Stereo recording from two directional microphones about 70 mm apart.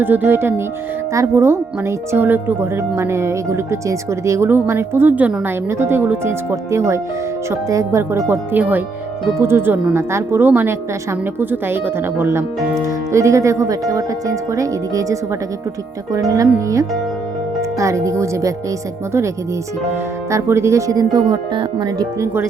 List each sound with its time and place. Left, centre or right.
0.0 s speech: right
1.1 s speech: right
5.6 s speech: right
8.5 s speech: right
20.3 s speech: right
20.9 s speech: right